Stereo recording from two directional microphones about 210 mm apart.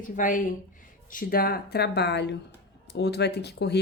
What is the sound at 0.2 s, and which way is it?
Speech, 40° left (ahead or behind).